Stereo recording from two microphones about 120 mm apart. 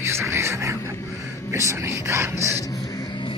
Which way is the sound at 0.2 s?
20° right (ahead or behind).